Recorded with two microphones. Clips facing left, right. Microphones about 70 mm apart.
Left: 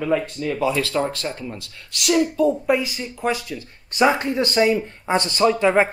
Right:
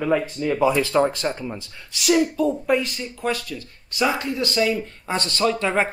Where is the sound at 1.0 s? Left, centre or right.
Centre.